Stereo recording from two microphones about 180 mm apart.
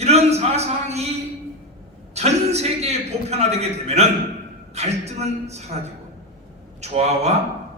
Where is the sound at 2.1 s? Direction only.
35° right (ahead or behind).